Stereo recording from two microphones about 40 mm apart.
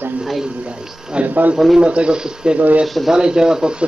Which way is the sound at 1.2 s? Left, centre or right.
Right.